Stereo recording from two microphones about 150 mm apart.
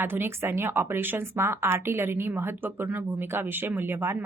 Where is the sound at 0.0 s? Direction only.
15° right (ahead or behind).